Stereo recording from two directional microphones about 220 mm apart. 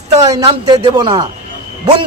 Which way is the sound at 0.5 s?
20° right (ahead or behind).